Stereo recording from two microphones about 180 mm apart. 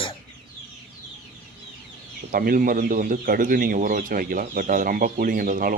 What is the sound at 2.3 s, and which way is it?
Speech, 55° right (ahead or behind).